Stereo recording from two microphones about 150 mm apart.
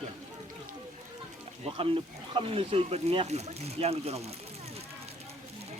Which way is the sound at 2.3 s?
40° right (ahead or behind).